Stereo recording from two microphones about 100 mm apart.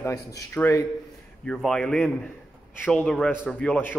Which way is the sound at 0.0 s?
35° left (ahead or behind).